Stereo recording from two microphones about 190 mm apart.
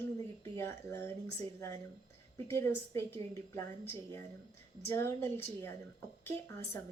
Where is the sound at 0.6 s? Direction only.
15° left (ahead or behind).